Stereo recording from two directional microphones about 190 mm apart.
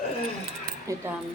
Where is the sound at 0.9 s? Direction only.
15° right (ahead or behind).